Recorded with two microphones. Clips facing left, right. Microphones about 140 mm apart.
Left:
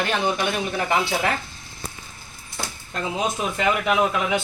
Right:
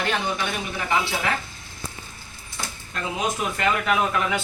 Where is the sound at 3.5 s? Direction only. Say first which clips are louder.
Left 2 dB; 15° left (ahead or behind).